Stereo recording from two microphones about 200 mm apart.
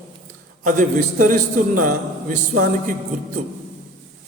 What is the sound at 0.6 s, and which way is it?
A man's voice, 40° right (ahead or behind).